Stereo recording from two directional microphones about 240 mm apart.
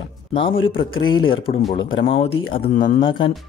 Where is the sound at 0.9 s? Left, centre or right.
Centre.